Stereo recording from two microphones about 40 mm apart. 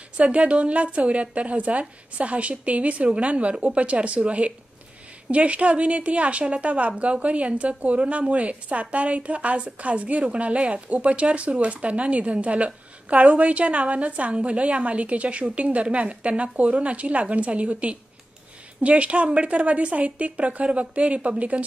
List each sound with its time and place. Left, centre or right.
0.2 s speech: right